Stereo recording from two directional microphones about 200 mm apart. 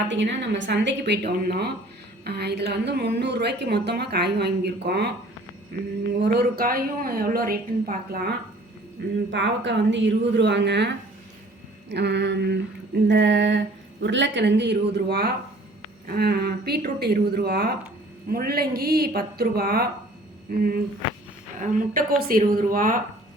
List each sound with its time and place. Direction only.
0.1 s a woman's voice: 65° right (ahead or behind)
6.1 s a woman's voice: 55° right (ahead or behind)
9.0 s a woman's voice: 60° right (ahead or behind)
21.6 s a woman's voice: 45° right (ahead or behind)